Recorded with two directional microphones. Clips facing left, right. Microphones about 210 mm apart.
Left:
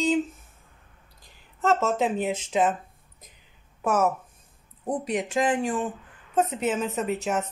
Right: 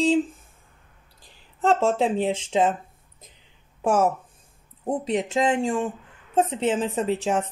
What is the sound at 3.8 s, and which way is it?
Speech, 30° right (ahead or behind).